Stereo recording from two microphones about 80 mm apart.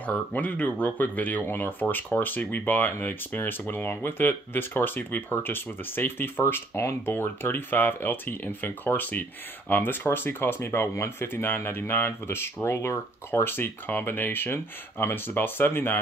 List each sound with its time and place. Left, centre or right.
0.0 s speech: centre